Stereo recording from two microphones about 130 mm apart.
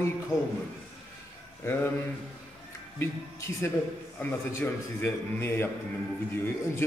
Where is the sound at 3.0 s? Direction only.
20° left (ahead or behind).